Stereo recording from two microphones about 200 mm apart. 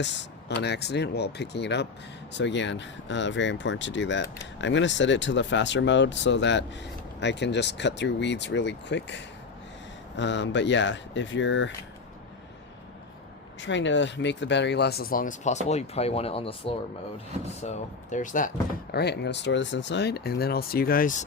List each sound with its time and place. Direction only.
0.0 s speech: 60° left (ahead or behind)
13.6 s speech: 65° left (ahead or behind); by 21.2 s 40° left (ahead or behind)